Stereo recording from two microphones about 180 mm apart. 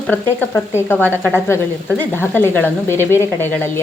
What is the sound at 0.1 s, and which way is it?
Speech, 10° left (ahead or behind).